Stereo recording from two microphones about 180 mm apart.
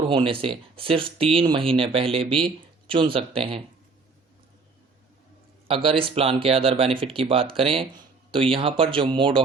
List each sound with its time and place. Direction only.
0.1 s speech: 30° right (ahead or behind)
5.6 s speech: 30° right (ahead or behind)